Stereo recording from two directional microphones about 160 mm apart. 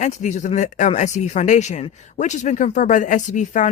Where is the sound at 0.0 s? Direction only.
50° left (ahead or behind).